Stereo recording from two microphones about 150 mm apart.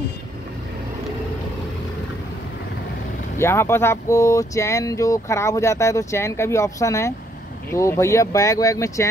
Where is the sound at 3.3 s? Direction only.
15° left (ahead or behind).